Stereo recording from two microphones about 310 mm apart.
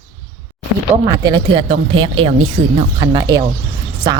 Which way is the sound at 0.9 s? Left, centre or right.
Centre.